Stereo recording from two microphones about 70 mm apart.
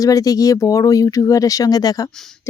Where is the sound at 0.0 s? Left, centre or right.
Left.